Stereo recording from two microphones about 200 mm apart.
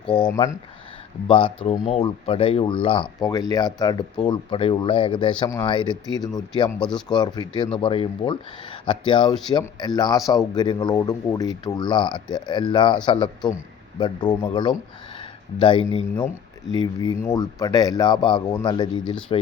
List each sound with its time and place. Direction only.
0.1 s a man's voice: 20° left (ahead or behind)
1.3 s a man's voice: 25° left (ahead or behind)
6.7 s speech: 5° left (ahead or behind)
7.1 s a man's voice: 20° left (ahead or behind)
16.7 s a man's voice: 20° left (ahead or behind)